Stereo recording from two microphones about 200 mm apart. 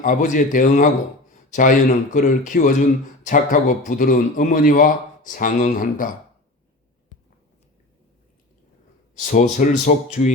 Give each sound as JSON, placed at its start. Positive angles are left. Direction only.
{"t": 0.0, "sound": "a man's voice", "side_deg": 40}
{"t": 9.1, "sound": "speech", "side_deg": 40}